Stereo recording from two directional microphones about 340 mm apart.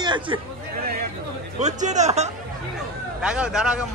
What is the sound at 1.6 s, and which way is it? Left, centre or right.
Speech, right.